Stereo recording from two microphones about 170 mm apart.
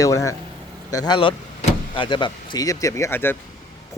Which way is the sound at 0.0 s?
20° left (ahead or behind).